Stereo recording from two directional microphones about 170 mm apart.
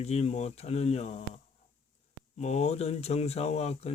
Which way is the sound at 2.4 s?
40° left (ahead or behind).